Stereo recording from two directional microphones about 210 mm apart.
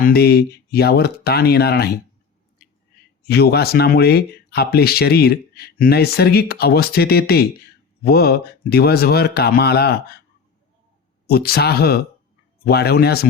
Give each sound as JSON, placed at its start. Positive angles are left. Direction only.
{"t": 0.0, "sound": "speech", "side_deg": 50}
{"t": 3.2, "sound": "speech", "side_deg": 50}
{"t": 11.3, "sound": "speech", "side_deg": 50}